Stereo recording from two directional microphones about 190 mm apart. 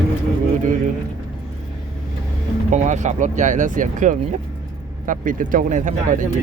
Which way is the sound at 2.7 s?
40° right (ahead or behind).